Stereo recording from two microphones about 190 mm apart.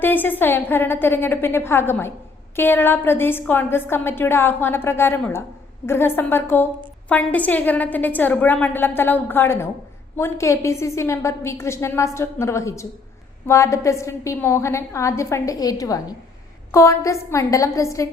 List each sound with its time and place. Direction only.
0.0 s a woman's voice: 10° left (ahead or behind)